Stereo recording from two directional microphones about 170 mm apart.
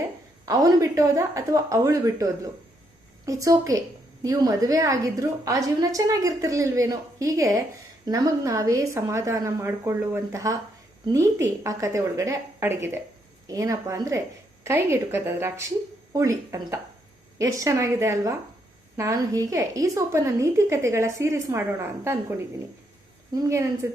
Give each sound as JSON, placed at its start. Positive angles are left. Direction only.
{"t": 0.4, "sound": "a woman's voice", "side_deg": -20}